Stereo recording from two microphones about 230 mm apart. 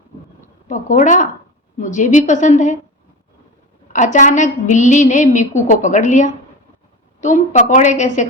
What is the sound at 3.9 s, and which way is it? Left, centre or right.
A woman's voice, left.